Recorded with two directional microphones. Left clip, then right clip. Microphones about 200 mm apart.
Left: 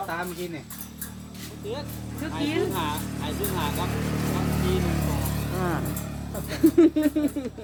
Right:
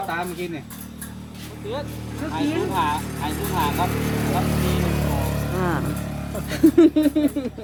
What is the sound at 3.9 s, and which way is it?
Speech, 60° right (ahead or behind).